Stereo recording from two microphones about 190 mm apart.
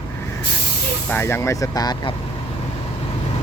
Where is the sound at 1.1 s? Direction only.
10° left (ahead or behind).